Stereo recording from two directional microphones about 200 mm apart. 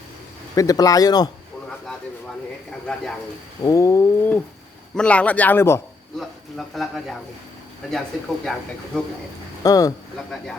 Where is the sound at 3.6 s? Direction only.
15° left (ahead or behind).